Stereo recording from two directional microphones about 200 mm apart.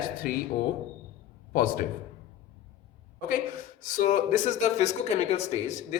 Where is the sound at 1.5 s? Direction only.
45° left (ahead or behind).